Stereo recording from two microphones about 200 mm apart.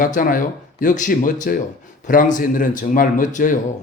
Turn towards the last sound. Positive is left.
turn(degrees=40)  # may be behind; listen again after turning